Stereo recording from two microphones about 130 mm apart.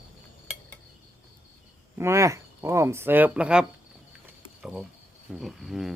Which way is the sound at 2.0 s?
20° right (ahead or behind).